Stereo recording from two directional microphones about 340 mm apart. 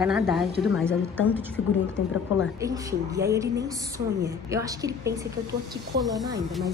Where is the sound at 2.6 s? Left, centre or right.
Centre.